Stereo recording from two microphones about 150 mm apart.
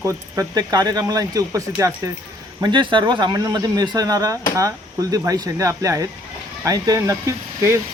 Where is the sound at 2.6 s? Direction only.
30° right (ahead or behind).